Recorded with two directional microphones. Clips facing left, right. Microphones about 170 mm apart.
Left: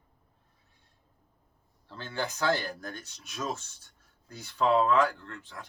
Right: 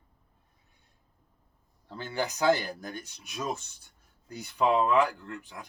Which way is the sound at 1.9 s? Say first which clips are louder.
Right 2 dB; 15° right (ahead or behind).